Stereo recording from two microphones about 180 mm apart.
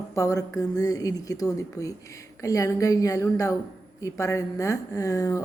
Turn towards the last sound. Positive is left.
turn(degrees=20)  # may be behind; listen again after turning